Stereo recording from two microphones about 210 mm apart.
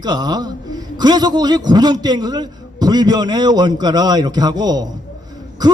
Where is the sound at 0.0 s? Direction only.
20° right (ahead or behind).